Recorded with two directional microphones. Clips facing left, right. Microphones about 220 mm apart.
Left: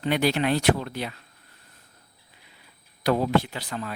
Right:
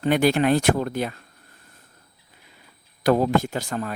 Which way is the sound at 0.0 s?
50° right (ahead or behind).